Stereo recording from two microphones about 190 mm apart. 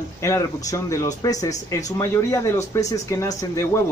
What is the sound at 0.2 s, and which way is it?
Speech, 15° left (ahead or behind).